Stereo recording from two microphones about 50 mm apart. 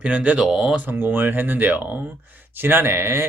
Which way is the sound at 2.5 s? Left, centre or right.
Right.